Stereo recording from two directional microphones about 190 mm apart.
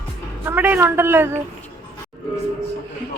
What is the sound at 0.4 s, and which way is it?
Speech, 10° right (ahead or behind).